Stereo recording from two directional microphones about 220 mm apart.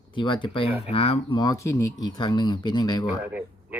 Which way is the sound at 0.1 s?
20° left (ahead or behind).